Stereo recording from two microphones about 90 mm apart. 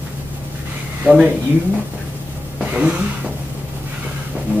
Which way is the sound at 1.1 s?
15° right (ahead or behind).